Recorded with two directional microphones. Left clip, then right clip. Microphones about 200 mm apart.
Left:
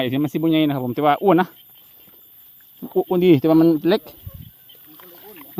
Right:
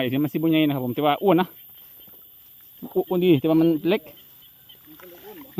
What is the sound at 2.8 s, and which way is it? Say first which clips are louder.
Speech: left 4 dB; 25° left (ahead or behind).